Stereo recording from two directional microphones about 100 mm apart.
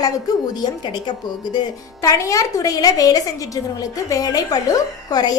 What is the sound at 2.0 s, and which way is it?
A woman's voice, 35° left (ahead or behind).